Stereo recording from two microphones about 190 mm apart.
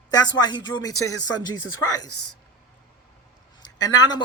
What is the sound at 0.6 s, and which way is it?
Speech, 20° left (ahead or behind).